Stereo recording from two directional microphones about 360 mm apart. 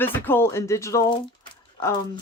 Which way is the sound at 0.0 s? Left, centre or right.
Centre.